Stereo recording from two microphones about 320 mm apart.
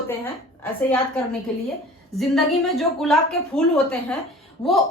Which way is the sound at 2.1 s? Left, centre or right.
Centre.